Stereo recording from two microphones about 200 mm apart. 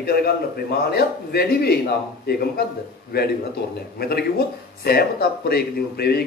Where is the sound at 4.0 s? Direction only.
50° left (ahead or behind).